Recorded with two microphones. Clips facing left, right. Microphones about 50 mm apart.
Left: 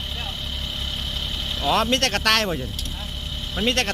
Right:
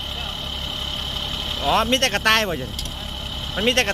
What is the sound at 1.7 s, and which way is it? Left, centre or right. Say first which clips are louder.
Speech: right 1 dB; centre.